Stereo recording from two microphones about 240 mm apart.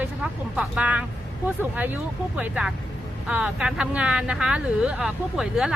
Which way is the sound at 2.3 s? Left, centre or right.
Centre.